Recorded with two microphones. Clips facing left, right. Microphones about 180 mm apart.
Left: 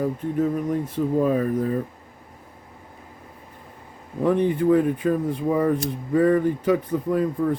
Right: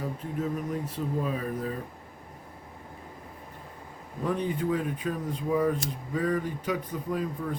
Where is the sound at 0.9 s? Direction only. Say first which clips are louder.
Left 9 dB; 50° left (ahead or behind).